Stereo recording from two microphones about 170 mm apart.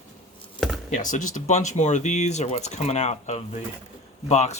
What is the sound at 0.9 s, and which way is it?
Speech, 50° left (ahead or behind).